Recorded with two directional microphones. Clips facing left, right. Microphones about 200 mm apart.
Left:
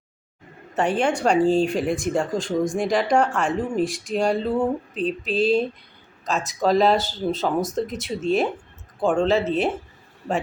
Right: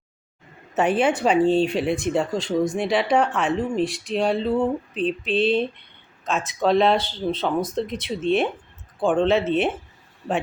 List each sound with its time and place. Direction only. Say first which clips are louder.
0.7 s speech: right 2 dB; 5° right (ahead or behind)